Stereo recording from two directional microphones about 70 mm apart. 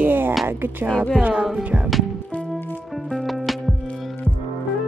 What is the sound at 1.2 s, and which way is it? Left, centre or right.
Music, centre.